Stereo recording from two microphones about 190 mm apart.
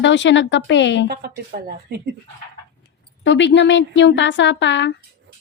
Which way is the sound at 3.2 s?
70° left (ahead or behind).